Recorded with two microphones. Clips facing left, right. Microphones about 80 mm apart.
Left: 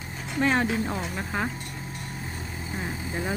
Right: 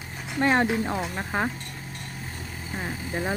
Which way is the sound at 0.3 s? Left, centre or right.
Centre.